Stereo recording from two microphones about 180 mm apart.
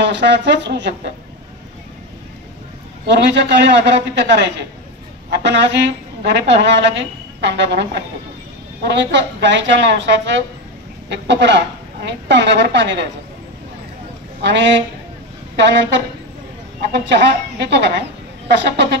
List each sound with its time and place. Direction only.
0.0 s a woman's voice: 75° right (ahead or behind)
3.1 s a woman's voice: 75° right (ahead or behind)
14.4 s a woman's voice: 80° right
16.9 s a woman's voice: 70° right (ahead or behind)